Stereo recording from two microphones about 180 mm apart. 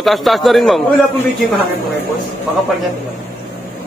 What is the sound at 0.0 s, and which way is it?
Speech, centre (ahead or behind).